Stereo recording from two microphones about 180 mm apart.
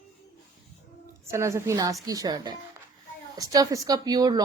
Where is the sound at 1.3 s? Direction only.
15° right (ahead or behind).